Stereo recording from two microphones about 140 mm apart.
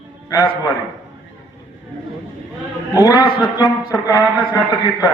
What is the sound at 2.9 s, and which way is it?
Speech, 25° left (ahead or behind).